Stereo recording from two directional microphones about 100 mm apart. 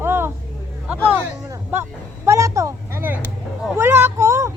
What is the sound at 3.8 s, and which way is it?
Vehicle, 25° right (ahead or behind).